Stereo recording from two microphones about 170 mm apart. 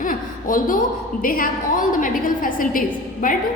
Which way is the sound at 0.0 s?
55° left (ahead or behind).